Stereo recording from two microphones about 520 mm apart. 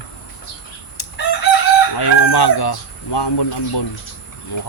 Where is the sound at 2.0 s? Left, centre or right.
Left.